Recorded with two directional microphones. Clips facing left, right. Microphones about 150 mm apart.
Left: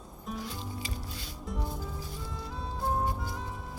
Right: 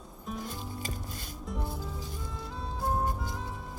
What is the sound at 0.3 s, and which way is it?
Music, 45° right (ahead or behind).